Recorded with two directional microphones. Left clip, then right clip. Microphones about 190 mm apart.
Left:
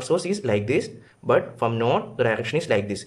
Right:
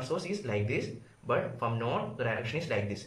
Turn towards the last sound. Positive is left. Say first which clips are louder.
# left 10 dB
turn(degrees=50)  # may be behind; listen again after turning